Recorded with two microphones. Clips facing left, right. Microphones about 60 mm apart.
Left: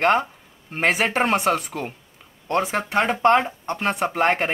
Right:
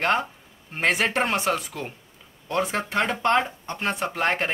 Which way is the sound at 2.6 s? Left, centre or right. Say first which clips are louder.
Left 3 dB; centre.